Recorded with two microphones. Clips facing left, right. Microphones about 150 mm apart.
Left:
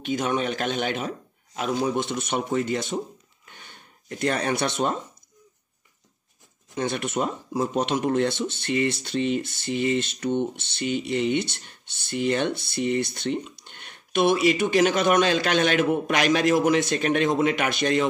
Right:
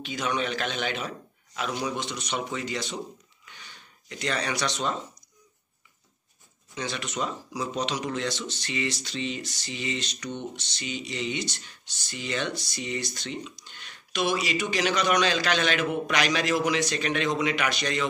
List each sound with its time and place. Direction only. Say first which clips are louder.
0.0 s a man's voice: left 4 dB; 50° left (ahead or behind)
3.4 s a sound: left 2 dB; 50° left (ahead or behind)
6.7 s speech: left 7 dB; 50° left (ahead or behind)